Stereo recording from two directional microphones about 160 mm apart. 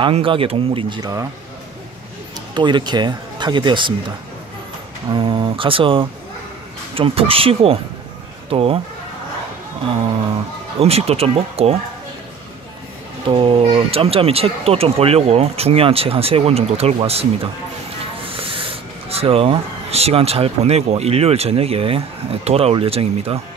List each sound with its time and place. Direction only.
0.0 s speech: 35° right (ahead or behind)
2.3 s speech: 30° right (ahead or behind)
5.1 s speech: 30° right (ahead or behind)
10.8 s speech: 40° right (ahead or behind)
13.3 s speech: 35° right (ahead or behind)